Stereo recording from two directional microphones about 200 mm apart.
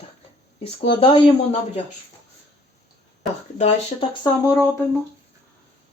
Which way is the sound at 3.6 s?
35° left (ahead or behind).